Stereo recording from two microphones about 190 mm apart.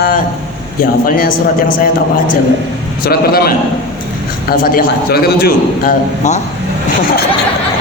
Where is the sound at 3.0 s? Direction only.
55° left (ahead or behind).